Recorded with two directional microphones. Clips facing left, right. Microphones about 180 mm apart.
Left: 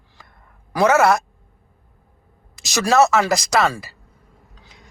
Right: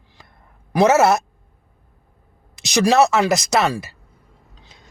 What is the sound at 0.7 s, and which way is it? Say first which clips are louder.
Speech: right 1 dB; 25° right (ahead or behind).